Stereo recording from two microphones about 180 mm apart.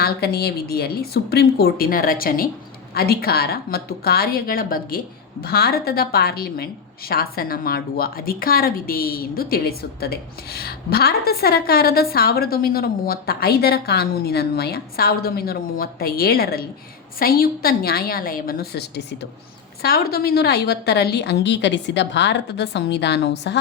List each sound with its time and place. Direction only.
0.0 s a woman's voice: 60° left (ahead or behind)